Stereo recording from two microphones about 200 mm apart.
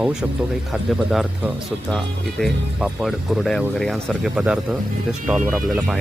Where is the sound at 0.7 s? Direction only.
5° right (ahead or behind).